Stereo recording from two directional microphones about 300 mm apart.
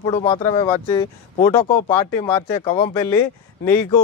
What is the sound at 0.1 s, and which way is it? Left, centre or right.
Speech, centre.